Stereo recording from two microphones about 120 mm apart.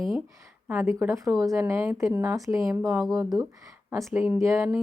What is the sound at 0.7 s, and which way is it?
Speech, 15° right (ahead or behind).